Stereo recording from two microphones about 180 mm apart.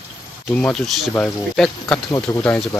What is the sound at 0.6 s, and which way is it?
Speech, centre (ahead or behind).